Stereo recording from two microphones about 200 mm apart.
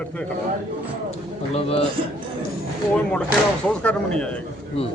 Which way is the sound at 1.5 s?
30° left (ahead or behind).